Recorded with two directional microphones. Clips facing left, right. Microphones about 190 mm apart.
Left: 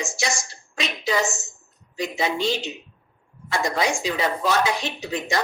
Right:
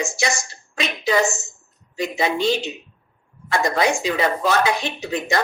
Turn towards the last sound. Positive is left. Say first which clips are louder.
# right 3 dB
turn(degrees=-55)  # may be behind; listen again after turning